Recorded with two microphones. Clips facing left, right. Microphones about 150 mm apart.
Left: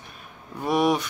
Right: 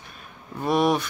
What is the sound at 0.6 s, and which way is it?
Speech, 10° left (ahead or behind).